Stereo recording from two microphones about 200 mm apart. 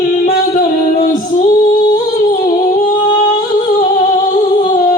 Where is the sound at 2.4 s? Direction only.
40° left (ahead or behind).